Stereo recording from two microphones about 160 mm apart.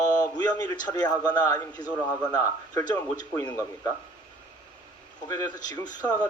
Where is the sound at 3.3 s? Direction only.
15° left (ahead or behind).